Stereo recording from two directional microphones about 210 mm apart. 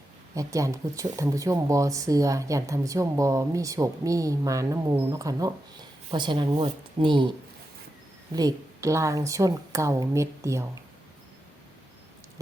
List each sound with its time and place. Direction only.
0.3 s speech: 15° right (ahead or behind)
8.4 s speech: 15° right (ahead or behind)